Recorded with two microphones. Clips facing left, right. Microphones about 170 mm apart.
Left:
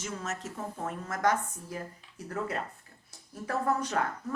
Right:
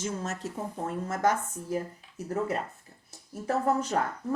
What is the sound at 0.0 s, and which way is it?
Speech, 30° right (ahead or behind).